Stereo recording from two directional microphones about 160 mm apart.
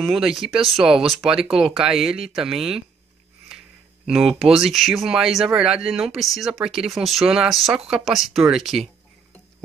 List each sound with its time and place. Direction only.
0.0 s speech: centre (ahead or behind)